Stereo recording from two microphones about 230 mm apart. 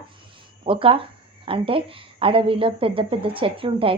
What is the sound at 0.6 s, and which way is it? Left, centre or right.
A woman's voice, right.